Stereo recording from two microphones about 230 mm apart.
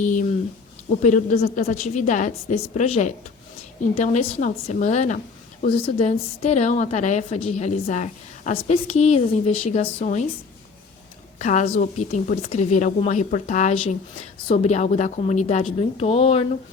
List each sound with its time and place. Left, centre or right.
0.0 s a woman's voice: left
11.3 s a woman's voice: left